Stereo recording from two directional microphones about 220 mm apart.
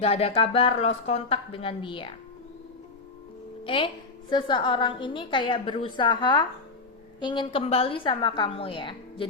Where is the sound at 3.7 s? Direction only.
25° left (ahead or behind).